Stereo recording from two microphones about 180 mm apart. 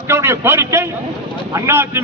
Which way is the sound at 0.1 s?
15° right (ahead or behind).